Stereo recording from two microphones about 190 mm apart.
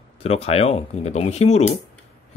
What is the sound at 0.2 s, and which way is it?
Speech, 30° left (ahead or behind).